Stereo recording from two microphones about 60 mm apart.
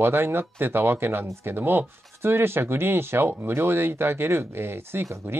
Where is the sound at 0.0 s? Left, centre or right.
Right.